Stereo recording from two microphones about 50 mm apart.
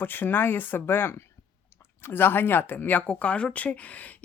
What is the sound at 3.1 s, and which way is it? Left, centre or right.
Speech, left.